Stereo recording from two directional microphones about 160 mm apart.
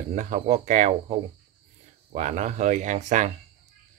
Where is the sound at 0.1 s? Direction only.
45° right (ahead or behind).